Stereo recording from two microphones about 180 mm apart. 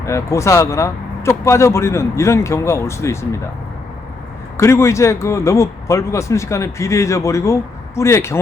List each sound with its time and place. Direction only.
0.0 s speech: 15° left (ahead or behind)
4.5 s speech: 15° left (ahead or behind)